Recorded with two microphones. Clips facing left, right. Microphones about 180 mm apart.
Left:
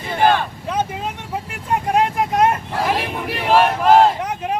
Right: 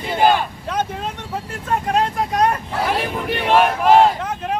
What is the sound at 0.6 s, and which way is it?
Vehicle, 5° left (ahead or behind).